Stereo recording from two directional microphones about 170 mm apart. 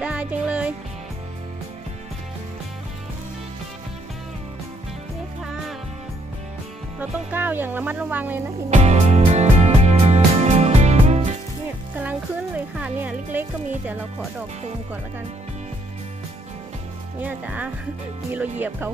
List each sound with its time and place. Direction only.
0.0 s music: 10° right (ahead or behind)
5.4 s music: 5° right (ahead or behind)
7.0 s speech: 10° right (ahead or behind)
8.6 s music: 40° right (ahead or behind)
12.0 s speech: 10° right (ahead or behind)
17.2 s speech: 10° right (ahead or behind)